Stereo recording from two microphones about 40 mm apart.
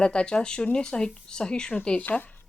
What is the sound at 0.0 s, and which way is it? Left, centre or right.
Speech, left.